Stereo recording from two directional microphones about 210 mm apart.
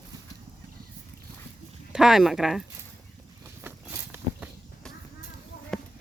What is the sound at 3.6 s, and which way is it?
Walk, 10° right (ahead or behind).